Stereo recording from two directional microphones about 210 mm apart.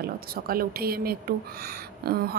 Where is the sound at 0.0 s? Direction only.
45° right (ahead or behind).